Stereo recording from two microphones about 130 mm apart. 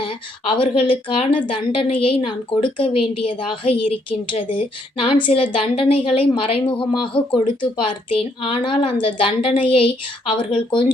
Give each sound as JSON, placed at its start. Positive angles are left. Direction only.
{"t": 0.0, "sound": "a woman's voice", "side_deg": 45}